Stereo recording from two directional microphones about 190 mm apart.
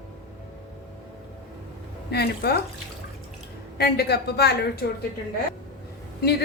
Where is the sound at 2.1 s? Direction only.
55° left (ahead or behind).